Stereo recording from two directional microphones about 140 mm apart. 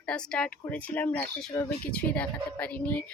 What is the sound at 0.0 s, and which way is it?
Speech, 5° left (ahead or behind).